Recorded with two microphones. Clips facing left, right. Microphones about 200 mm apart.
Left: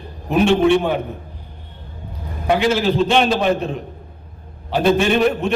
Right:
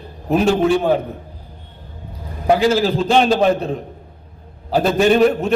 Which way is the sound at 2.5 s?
35° right (ahead or behind).